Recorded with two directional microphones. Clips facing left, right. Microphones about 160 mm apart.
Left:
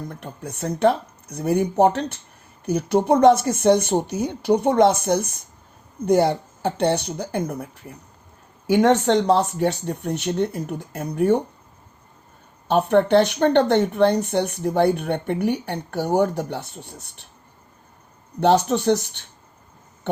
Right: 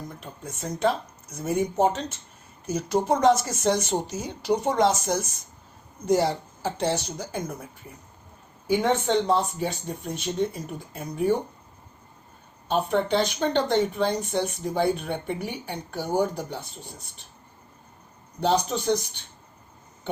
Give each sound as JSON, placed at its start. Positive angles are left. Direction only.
{"t": 0.1, "sound": "speech", "side_deg": 65}
{"t": 8.6, "sound": "speech", "side_deg": 75}
{"t": 12.6, "sound": "speech", "side_deg": 65}
{"t": 18.3, "sound": "speech", "side_deg": 65}